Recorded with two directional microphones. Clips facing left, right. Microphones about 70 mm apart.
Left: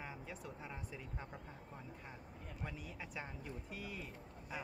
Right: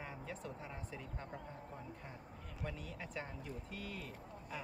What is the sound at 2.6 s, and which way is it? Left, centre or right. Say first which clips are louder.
A woman's voice: right 3 dB; centre.